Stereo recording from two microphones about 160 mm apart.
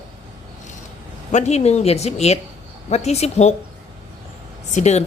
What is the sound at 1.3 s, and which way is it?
Speech, 45° left (ahead or behind).